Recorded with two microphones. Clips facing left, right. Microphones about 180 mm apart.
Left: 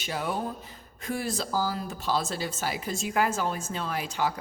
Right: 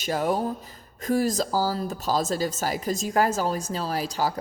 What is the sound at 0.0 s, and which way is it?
Speech, 45° right (ahead or behind).